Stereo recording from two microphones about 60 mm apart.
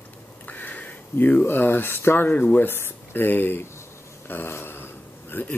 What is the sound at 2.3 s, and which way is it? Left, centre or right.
Speech, left.